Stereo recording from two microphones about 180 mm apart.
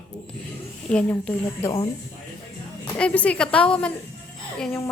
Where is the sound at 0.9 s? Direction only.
10° left (ahead or behind).